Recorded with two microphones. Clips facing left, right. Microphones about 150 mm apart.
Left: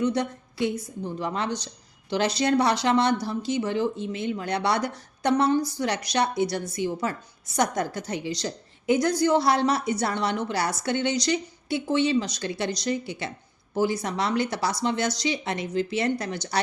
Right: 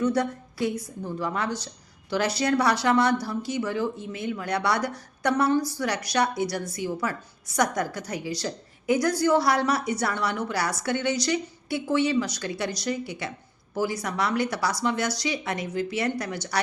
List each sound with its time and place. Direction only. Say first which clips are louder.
0.0 s a woman's voice: right 1 dB; 20° left (ahead or behind)